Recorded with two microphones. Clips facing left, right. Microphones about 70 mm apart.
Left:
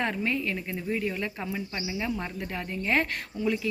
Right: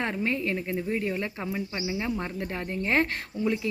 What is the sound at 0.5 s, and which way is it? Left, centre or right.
Speech, centre.